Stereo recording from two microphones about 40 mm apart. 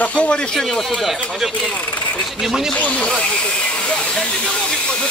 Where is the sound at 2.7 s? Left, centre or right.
Left.